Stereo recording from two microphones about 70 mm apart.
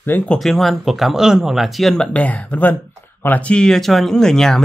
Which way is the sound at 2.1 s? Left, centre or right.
Left.